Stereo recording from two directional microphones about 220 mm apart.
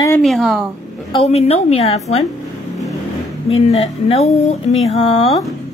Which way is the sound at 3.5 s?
30° left (ahead or behind).